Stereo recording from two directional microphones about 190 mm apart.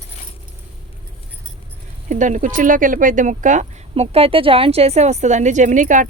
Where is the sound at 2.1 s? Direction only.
40° right (ahead or behind).